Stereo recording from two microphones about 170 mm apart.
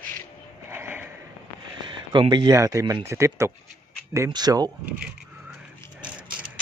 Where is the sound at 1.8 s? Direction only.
25° right (ahead or behind).